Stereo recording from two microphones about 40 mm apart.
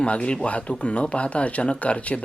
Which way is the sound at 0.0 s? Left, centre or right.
Left.